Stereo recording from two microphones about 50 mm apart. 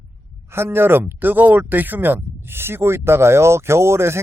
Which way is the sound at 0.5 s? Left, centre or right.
Right.